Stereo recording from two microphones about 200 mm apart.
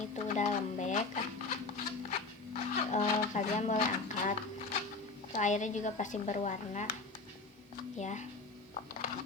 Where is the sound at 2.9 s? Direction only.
35° left (ahead or behind).